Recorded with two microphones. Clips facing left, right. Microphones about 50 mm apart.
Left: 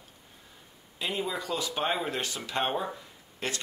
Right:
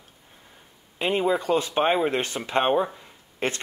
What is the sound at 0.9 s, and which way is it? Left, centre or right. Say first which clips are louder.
Speech: right 9 dB; right.